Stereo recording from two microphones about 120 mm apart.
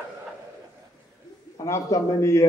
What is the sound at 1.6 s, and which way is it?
Speech, 25° left (ahead or behind).